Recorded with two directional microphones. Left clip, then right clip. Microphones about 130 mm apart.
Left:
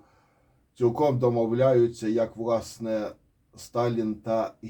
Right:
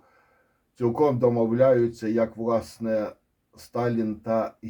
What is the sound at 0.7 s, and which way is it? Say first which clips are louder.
Speech: right 1 dB; 50° right (ahead or behind).